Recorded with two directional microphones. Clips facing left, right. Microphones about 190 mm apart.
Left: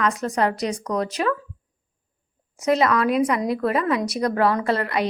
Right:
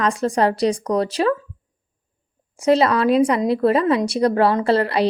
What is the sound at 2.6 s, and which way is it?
Speech, 30° right (ahead or behind).